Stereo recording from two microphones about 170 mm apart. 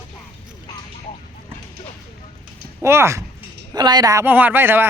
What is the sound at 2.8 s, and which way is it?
Speech, 15° right (ahead or behind).